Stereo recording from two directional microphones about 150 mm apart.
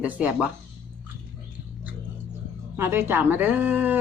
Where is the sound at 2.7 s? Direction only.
15° right (ahead or behind).